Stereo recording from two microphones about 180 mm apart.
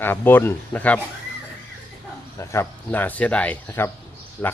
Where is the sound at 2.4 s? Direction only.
15° left (ahead or behind).